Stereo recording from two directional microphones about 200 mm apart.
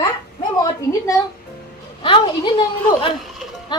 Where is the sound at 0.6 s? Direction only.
15° left (ahead or behind).